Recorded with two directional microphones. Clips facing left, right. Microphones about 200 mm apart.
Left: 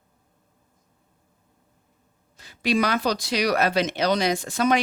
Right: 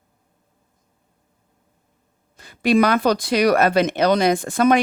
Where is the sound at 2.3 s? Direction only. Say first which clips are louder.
Right 6 dB; 55° right (ahead or behind).